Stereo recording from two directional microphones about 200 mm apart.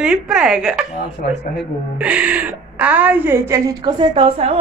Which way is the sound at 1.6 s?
5° right (ahead or behind).